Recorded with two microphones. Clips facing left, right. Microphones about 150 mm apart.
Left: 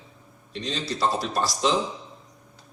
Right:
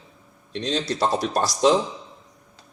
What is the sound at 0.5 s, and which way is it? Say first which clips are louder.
Speech: right 5 dB; 60° right (ahead or behind).